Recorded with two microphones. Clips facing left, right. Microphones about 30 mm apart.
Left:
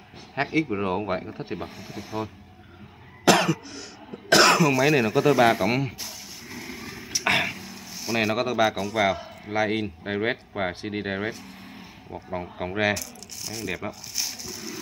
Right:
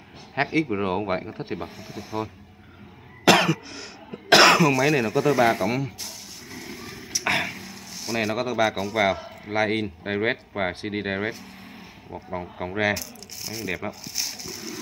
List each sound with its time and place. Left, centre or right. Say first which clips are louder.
0.4 s a man's voice: right 1 dB; centre
3.3 s cough: right 2 dB; right
4.6 s speech: even; centre
6.5 s a sound: left 1 dB; centre
8.7 s a man's voice: right 1 dB; centre
12.5 s speech: even; centre
13.5 s speech: right 1 dB; centre